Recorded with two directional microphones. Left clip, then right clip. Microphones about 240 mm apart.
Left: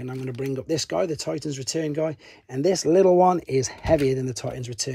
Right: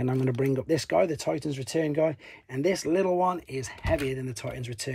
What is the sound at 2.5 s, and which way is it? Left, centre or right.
Speech, centre.